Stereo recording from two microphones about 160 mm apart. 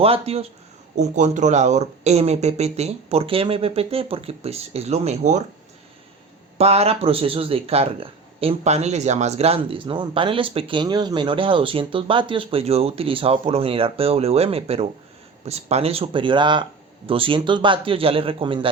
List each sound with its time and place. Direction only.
0.0 s speech: 40° right (ahead or behind)
0.9 s speech: 50° right (ahead or behind)
6.6 s speech: 40° right (ahead or behind)